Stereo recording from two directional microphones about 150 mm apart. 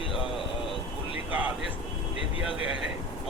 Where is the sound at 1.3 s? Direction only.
10° right (ahead or behind).